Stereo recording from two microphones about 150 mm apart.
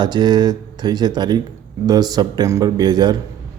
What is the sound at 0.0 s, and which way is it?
Speech, 30° right (ahead or behind).